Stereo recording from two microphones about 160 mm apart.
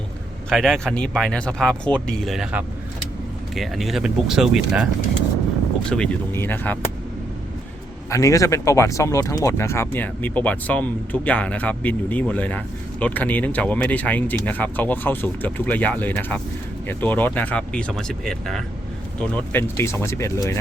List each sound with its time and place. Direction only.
0.5 s speech: centre (ahead or behind)
5.9 s speech: 5° left (ahead or behind)
8.1 s speech: 20° left (ahead or behind)